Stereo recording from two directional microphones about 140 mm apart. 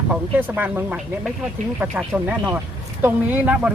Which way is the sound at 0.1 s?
10° right (ahead or behind).